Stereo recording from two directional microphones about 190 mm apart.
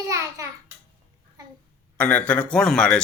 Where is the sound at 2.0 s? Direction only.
5° left (ahead or behind).